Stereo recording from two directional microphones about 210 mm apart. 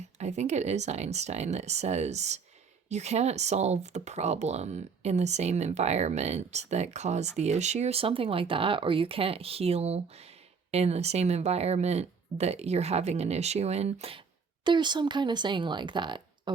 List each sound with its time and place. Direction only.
0.2 s speech: 35° right (ahead or behind)